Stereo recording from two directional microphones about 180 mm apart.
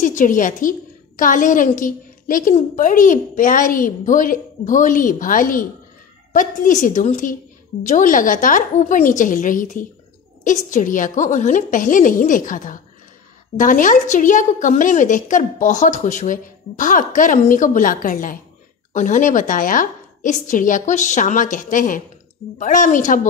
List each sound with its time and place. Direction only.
0.0 s a woman's voice: 45° left (ahead or behind)